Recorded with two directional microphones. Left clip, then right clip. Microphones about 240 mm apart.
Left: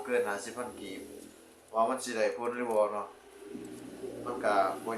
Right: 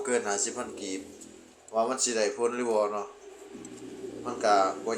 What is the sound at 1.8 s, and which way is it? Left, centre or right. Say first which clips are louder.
Speech: right 2 dB; centre.